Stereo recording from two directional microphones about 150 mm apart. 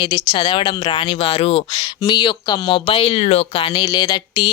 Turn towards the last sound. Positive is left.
turn(degrees=30)  # may be behind; listen again after turning